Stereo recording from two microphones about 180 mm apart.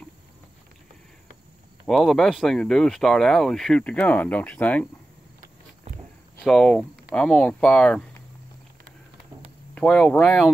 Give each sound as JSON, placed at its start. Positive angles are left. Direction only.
{"t": 1.9, "sound": "speech", "side_deg": 0}
{"t": 6.4, "sound": "speech", "side_deg": 0}
{"t": 9.8, "sound": "speech", "side_deg": 5}